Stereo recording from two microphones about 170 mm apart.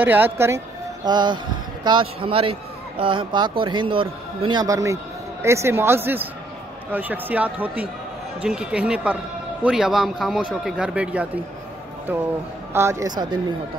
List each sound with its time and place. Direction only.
0.0 s speech: 10° right (ahead or behind)
1.0 s a man's voice: 25° right (ahead or behind); by 11.2 s 5° right (ahead or behind)
12.7 s a man's voice: 20° right (ahead or behind)